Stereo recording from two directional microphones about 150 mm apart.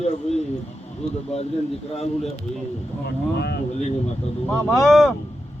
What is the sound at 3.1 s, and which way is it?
Speech, 90° left.